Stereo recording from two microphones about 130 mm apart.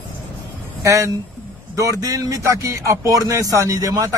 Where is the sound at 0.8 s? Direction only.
25° right (ahead or behind).